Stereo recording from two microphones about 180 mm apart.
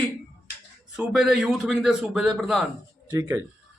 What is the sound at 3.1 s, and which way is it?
Speech, 15° right (ahead or behind).